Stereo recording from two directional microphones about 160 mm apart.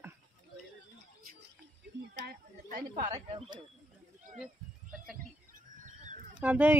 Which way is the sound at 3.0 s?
25° right (ahead or behind).